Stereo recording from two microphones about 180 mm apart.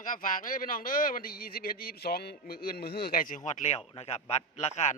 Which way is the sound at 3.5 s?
40° left (ahead or behind).